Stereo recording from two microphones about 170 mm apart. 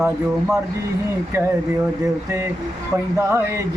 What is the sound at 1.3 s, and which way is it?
Speech, 15° right (ahead or behind).